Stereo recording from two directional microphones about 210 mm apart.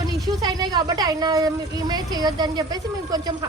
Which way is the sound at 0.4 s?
20° right (ahead or behind).